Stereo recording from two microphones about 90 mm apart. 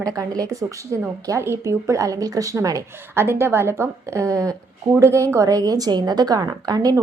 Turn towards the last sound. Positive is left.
turn(degrees=-45)  # may be behind; listen again after turning